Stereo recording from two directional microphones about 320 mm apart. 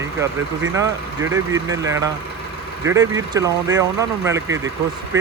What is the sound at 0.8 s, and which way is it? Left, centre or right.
Speech, centre.